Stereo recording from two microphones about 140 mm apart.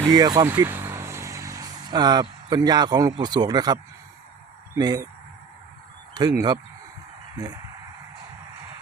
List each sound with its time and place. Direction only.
0.1 s a man's voice: 30° right (ahead or behind)
0.4 s vehicle: 15° right (ahead or behind); by 2.2 s 30° right (ahead or behind)
2.5 s a man's voice: 30° right (ahead or behind)
4.8 s a man's voice: 30° right (ahead or behind)
6.1 s a man's voice: 30° right (ahead or behind)